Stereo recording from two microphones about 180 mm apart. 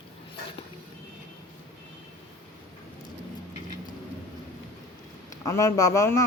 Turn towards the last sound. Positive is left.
turn(degrees=15)  # may be behind; listen again after turning